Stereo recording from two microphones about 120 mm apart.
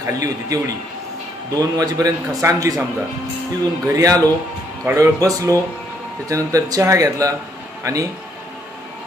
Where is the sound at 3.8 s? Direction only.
30° right (ahead or behind).